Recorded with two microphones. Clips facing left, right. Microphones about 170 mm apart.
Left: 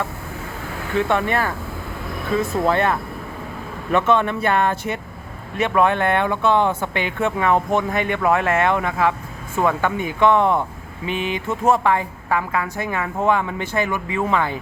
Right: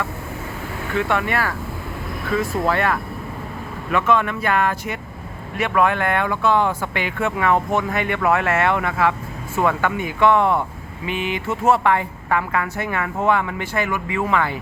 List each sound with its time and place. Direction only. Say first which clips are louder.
0.9 s a woman's voice: left 2 dB; 20° left (ahead or behind)
11.1 s speech: left 1 dB; 15° right (ahead or behind)
11.7 s a woman's voice: right 1 dB; 15° left (ahead or behind)